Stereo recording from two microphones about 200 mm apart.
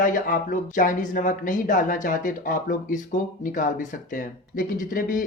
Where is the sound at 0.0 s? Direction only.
45° left (ahead or behind).